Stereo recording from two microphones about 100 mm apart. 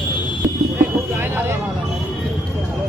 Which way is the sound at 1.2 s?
20° right (ahead or behind).